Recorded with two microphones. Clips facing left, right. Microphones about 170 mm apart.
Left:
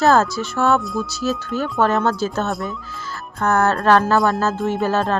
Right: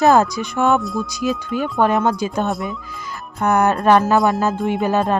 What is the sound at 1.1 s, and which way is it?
Speech, 15° right (ahead or behind).